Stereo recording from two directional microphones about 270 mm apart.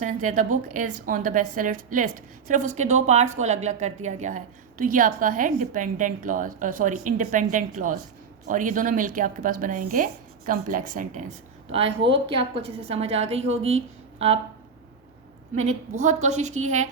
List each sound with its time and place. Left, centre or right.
0.0 s a woman's voice: right
11.9 s a woman's voice: right
12.3 s a woman's voice: centre
15.5 s a woman's voice: right